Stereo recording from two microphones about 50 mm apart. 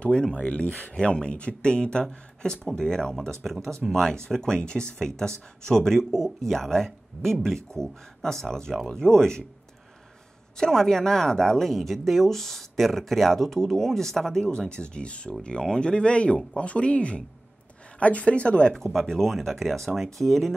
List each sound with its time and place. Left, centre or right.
0.4 s speech: left
0.9 s speech: centre
10.6 s speech: centre
18.9 s speech: centre